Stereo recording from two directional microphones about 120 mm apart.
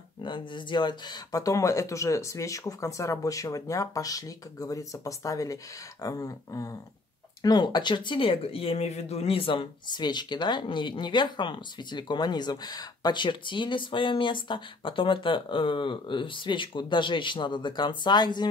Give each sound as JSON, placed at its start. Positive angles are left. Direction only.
{"t": 0.2, "sound": "speech", "side_deg": 40}